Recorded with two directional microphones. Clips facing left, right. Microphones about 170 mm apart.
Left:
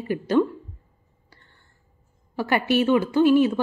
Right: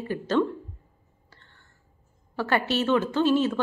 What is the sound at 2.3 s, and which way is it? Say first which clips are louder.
A woman's voice: left 4 dB; 10° left (ahead or behind).